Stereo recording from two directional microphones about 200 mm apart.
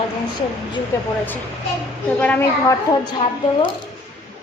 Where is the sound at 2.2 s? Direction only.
5° left (ahead or behind).